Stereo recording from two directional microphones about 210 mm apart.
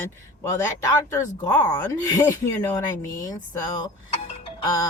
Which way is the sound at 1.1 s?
15° left (ahead or behind).